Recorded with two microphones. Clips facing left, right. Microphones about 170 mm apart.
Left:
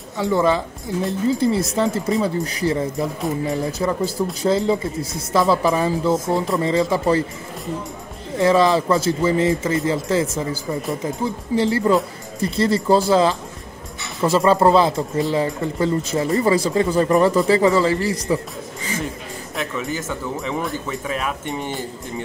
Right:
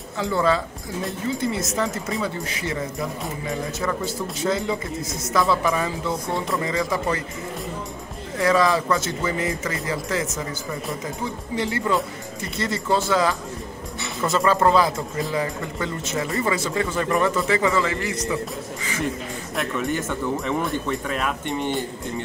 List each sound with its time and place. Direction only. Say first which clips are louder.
0.2 s speech: left 3 dB; 20° left (ahead or behind)
1.4 s speech: left 6 dB; 30° left (ahead or behind)
3.8 s speech: left 6 dB; 35° left (ahead or behind)
8.4 s speech: left 4 dB; 25° left (ahead or behind)
19.5 s speech: right 1 dB; centre (ahead or behind)